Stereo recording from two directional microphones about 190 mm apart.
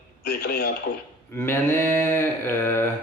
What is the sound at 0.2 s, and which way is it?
Speech, 55° left (ahead or behind).